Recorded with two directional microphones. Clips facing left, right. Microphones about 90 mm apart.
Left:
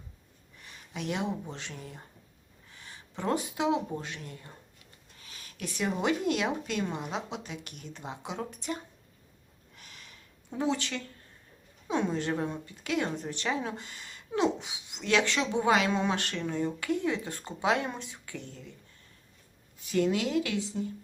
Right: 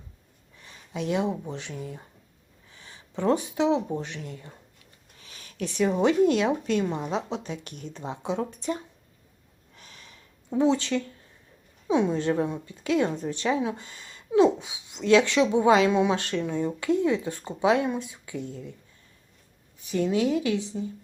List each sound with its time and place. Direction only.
0.9 s speech: 20° right (ahead or behind)
3.2 s speech: 20° right (ahead or behind)
5.4 s a woman's voice: 35° right (ahead or behind)
8.0 s speech: 20° right (ahead or behind)
9.8 s a sound: 30° right (ahead or behind)
10.5 s speech: 20° right (ahead or behind)
19.9 s speech: 25° right (ahead or behind)